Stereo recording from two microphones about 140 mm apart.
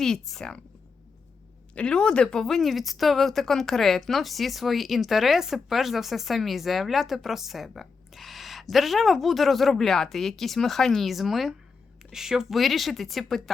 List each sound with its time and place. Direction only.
0.0 s a woman's voice: 5° left (ahead or behind)
1.7 s a woman's voice: 10° left (ahead or behind)